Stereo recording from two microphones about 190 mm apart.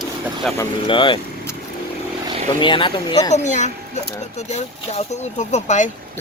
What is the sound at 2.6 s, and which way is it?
Speech, 25° left (ahead or behind).